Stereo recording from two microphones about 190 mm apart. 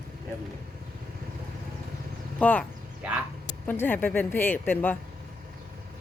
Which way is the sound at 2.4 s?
10° left (ahead or behind).